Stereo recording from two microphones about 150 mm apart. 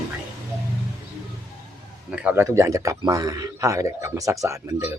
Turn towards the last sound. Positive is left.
turn(degrees=-15)  # may be behind; listen again after turning